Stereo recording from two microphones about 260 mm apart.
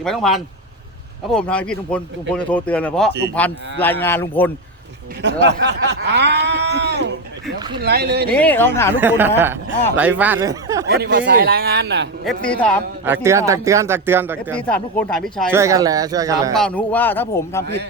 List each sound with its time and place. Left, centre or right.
0.0 s a man's voice: centre
5.2 s speech: right
8.3 s a man's voice: centre
9.0 s speech: centre
10.8 s speech: right
12.2 s speech: centre
13.1 s speech: centre
14.5 s speech: centre
15.5 s speech: centre
16.6 s a man's voice: centre